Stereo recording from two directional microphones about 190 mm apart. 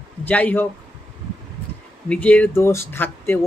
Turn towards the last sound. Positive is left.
turn(degrees=10)  # may be behind; listen again after turning